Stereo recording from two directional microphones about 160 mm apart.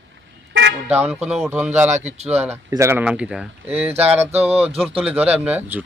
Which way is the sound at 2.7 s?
15° right (ahead or behind).